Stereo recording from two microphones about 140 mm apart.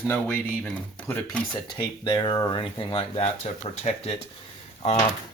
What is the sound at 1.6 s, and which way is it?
Speech, 35° left (ahead or behind).